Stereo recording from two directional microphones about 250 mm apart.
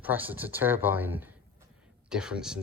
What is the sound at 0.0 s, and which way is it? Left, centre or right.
Speech, centre.